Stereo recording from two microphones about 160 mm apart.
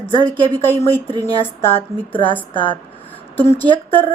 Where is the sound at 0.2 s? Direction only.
30° right (ahead or behind).